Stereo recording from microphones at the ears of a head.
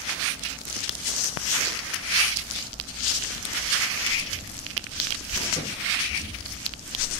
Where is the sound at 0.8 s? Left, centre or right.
Left.